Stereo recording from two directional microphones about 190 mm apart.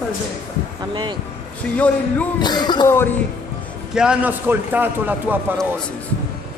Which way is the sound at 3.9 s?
5° right (ahead or behind).